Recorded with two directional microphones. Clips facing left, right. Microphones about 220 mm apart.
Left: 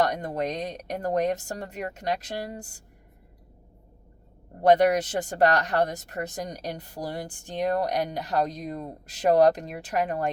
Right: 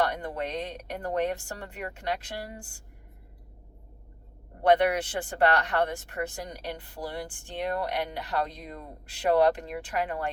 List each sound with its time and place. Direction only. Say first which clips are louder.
0.0 s a woman's voice: left 3 dB; 40° left (ahead or behind)
4.6 s a woman's voice: left 3 dB; 40° left (ahead or behind)